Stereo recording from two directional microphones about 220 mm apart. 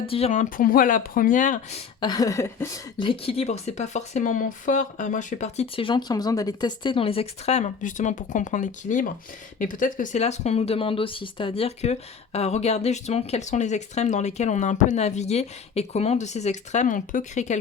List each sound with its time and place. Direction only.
0.0 s speech: 25° left (ahead or behind)
2.0 s speech: 20° left (ahead or behind); by 17.6 s 35° left (ahead or behind)